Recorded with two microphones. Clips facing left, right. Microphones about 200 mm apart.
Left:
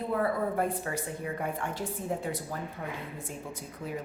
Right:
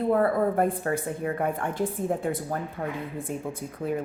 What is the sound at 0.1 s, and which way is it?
A woman's voice, 50° right (ahead or behind).